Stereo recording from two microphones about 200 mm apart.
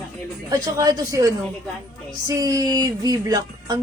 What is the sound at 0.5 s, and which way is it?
Speech, 15° right (ahead or behind).